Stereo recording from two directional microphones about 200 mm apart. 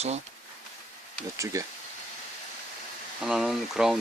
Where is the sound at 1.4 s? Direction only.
15° right (ahead or behind).